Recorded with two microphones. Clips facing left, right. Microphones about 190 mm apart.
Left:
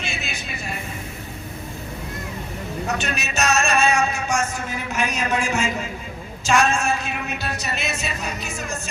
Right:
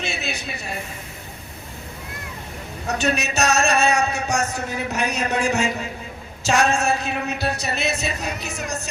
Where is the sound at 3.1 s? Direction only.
35° right (ahead or behind).